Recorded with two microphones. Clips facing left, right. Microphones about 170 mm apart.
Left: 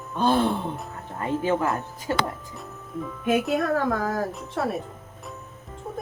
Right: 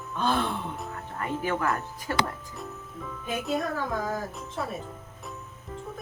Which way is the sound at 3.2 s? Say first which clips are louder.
Left 6 dB; 65° left (ahead or behind).